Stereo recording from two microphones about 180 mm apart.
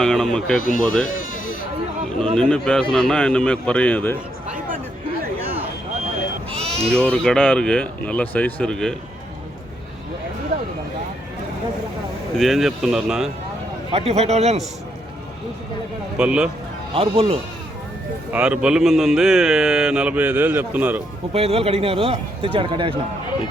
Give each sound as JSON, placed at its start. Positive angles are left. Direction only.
{"t": 0.0, "sound": "a man's voice", "side_deg": 5}
{"t": 0.6, "sound": "speech", "side_deg": 50}
{"t": 1.0, "sound": "sheep", "side_deg": 50}
{"t": 2.3, "sound": "a man's voice", "side_deg": 5}
{"t": 6.7, "sound": "bleat", "side_deg": -35}
{"t": 6.9, "sound": "a man's voice", "side_deg": 5}
{"t": 12.4, "sound": "a man's voice", "side_deg": 0}
{"t": 13.9, "sound": "speech", "side_deg": -35}
{"t": 16.1, "sound": "a man's voice", "side_deg": -5}
{"t": 16.9, "sound": "speech", "side_deg": -30}
{"t": 18.3, "sound": "a man's voice", "side_deg": -5}
{"t": 21.3, "sound": "speech", "side_deg": -35}